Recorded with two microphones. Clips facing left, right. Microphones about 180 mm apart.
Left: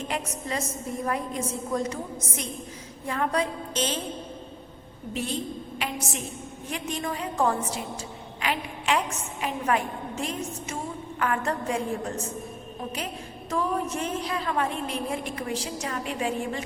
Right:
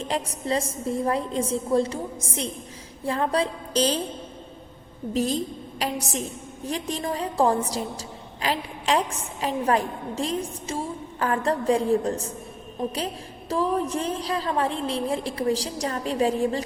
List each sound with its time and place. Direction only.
0.0 s a woman's voice: 30° right (ahead or behind)
5.1 s a woman's voice: 40° right (ahead or behind)
13.5 s a woman's voice: 35° right (ahead or behind)